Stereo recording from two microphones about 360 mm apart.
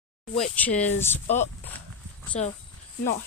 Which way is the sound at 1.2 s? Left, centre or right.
Centre.